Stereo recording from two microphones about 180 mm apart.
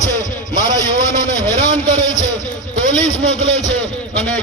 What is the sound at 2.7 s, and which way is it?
Speech, 40° left (ahead or behind).